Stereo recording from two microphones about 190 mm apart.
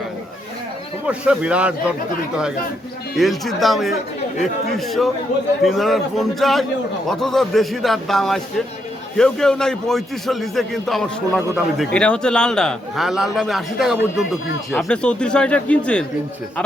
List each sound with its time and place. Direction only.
1.0 s a man's voice: 5° right (ahead or behind)
3.2 s a man's voice: centre (ahead or behind)